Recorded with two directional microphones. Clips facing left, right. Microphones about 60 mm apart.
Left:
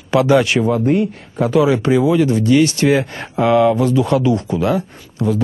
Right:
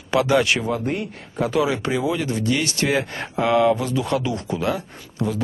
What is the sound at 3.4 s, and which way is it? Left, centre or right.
Speech, centre.